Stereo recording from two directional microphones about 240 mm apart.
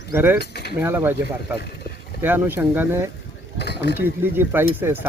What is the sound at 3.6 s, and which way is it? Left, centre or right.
Speech, left.